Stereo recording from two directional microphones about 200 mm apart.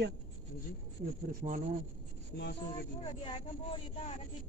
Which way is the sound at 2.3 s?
55° left (ahead or behind).